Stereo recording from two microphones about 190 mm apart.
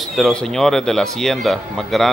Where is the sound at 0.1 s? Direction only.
Centre (ahead or behind).